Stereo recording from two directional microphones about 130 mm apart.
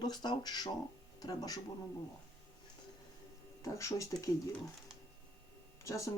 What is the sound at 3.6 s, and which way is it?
Speech, 25° left (ahead or behind).